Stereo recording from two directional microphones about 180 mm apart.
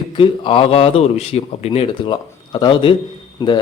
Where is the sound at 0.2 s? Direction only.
30° left (ahead or behind).